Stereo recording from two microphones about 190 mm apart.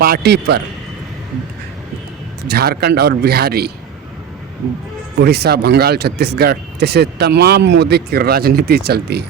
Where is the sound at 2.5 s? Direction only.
55° right (ahead or behind).